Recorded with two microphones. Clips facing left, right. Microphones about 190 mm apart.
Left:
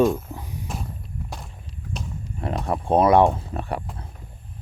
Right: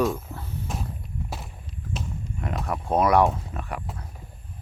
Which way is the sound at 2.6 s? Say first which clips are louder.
Left 4 dB; 30° left (ahead or behind).